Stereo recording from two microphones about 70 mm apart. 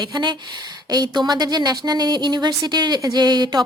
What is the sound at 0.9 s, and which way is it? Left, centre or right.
A woman's voice, right.